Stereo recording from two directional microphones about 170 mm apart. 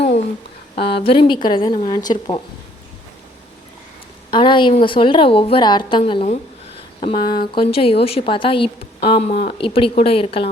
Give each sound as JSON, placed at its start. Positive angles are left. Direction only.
{"t": 0.9, "sound": "speech", "side_deg": 30}
{"t": 4.3, "sound": "a woman's voice", "side_deg": 30}